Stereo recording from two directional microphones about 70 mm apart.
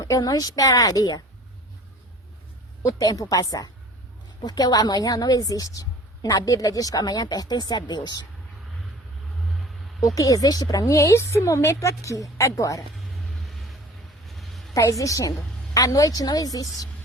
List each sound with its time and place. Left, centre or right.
0.0 s a woman's voice: left
2.8 s a woman's voice: left
10.2 s a woman's voice: left
14.3 s a sound: centre
14.8 s a woman's voice: left